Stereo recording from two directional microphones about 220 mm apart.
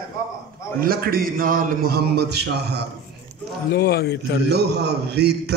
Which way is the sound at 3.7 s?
45° left (ahead or behind).